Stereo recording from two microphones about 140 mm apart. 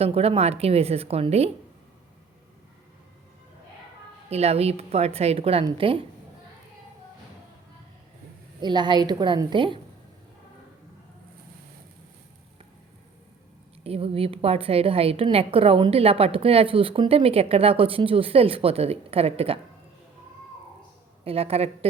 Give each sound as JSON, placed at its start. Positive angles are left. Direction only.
{"t": 0.0, "sound": "a woman's voice", "side_deg": -45}
{"t": 4.3, "sound": "a woman's voice", "side_deg": -50}
{"t": 8.6, "sound": "a woman's voice", "side_deg": -35}
{"t": 13.8, "sound": "a woman's voice", "side_deg": -45}
{"t": 21.2, "sound": "a woman's voice", "side_deg": -45}